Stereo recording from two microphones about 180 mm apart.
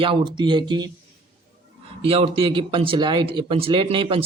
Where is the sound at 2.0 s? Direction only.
30° right (ahead or behind).